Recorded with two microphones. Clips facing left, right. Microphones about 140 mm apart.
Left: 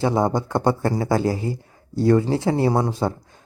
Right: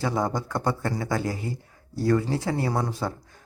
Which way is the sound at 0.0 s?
25° left (ahead or behind).